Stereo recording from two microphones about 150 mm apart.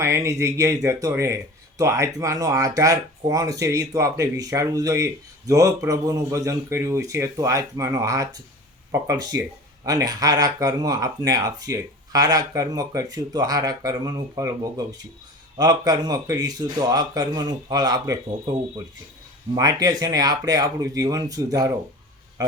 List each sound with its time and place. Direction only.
0.0 s speech: 20° right (ahead or behind)
19.5 s a man's voice: 25° right (ahead or behind)